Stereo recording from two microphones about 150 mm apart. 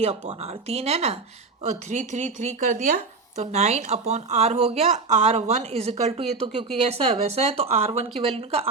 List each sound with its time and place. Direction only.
0.0 s speech: 45° right (ahead or behind); by 2.9 s 60° right (ahead or behind)
3.3 s speech: 50° right (ahead or behind)